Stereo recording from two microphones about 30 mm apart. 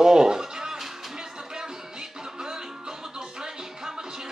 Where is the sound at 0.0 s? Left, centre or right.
Centre.